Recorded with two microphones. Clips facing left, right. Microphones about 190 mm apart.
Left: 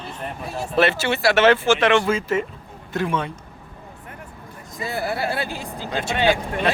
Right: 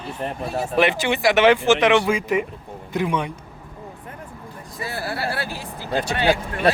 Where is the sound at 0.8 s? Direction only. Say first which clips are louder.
Left 1 dB; 15° right (ahead or behind).